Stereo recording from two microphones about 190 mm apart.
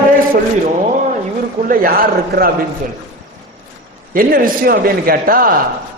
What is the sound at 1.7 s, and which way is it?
Speech, 50° right (ahead or behind).